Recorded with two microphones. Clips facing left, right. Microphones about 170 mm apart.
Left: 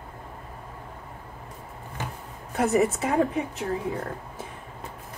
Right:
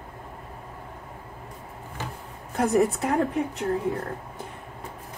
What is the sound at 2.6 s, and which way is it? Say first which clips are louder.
Speech: right 1 dB; 5° left (ahead or behind).